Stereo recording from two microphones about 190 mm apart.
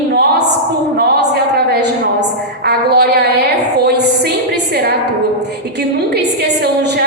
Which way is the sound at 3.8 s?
60° right (ahead or behind).